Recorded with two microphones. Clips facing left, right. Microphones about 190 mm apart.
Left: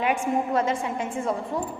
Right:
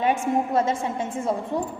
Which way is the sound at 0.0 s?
25° right (ahead or behind).